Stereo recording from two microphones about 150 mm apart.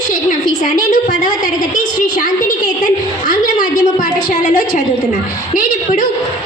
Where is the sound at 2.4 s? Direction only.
60° left (ahead or behind).